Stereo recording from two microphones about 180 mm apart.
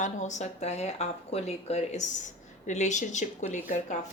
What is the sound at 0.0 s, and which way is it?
Speech, 40° left (ahead or behind).